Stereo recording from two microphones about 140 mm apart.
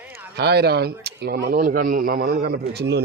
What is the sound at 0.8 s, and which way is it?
Speech, 90° right.